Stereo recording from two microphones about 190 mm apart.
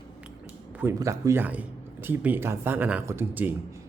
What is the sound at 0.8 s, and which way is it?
A man's voice, 15° right (ahead or behind).